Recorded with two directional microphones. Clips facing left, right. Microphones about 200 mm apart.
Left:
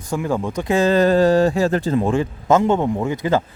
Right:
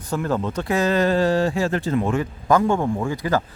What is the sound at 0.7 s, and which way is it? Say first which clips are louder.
Speech: left 4 dB; 30° left (ahead or behind).